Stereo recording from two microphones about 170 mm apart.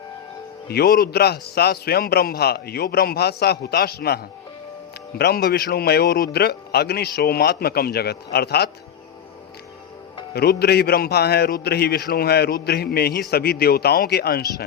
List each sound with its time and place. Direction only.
0.7 s a man's voice: 65° left (ahead or behind)
10.3 s a man's voice: 70° left (ahead or behind)